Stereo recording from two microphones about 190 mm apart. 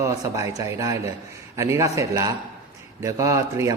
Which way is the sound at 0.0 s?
15° right (ahead or behind).